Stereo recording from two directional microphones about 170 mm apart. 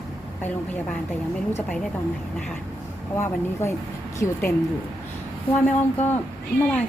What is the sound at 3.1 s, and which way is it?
Speech, 15° left (ahead or behind).